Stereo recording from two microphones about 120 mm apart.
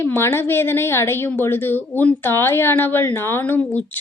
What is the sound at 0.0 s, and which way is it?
A woman's voice, 20° left (ahead or behind).